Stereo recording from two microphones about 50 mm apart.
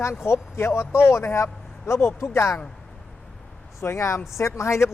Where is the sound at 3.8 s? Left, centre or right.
Left.